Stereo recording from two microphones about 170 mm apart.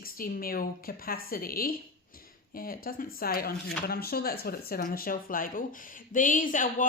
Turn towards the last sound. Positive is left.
turn(degrees=50)  # may be behind; listen again after turning